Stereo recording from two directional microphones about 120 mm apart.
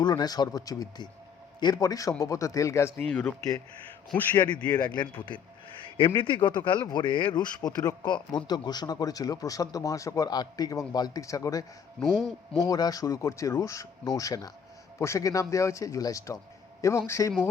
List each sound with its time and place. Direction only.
0.0 s speech: 35° left (ahead or behind)
3.1 s speech: 10° left (ahead or behind)
4.9 s speech: 40° left (ahead or behind)
12.6 s speech: 30° left (ahead or behind)